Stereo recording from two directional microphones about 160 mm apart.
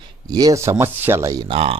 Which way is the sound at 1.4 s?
35° right (ahead or behind).